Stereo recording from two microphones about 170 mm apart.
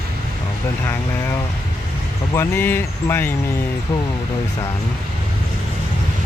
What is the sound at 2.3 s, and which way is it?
Speech, 15° left (ahead or behind).